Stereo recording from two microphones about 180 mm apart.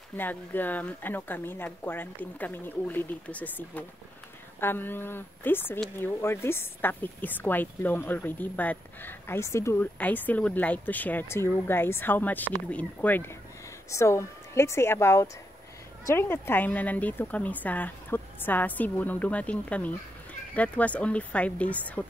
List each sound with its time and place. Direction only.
0.1 s a woman's voice: 10° left (ahead or behind)